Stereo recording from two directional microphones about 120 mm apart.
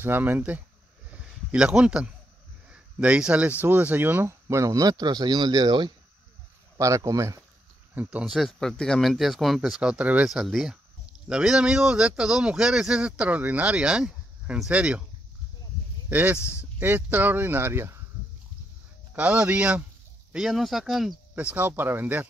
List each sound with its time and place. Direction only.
0.0 s speech: 15° right (ahead or behind)
1.1 s a sound: 5° right (ahead or behind)
2.7 s speech: 10° right (ahead or behind); by 5.9 s 40° right (ahead or behind)
6.8 s speech: 25° right (ahead or behind)
7.9 s speech: 15° right (ahead or behind)
8.4 s speech: 5° left (ahead or behind)
16.1 s speech: 15° right (ahead or behind)
16.3 s speech: 20° left (ahead or behind)
16.8 s speech: 15° right (ahead or behind)
19.1 s speech: 10° right (ahead or behind)